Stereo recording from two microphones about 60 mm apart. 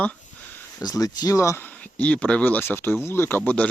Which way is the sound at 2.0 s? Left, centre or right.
Left.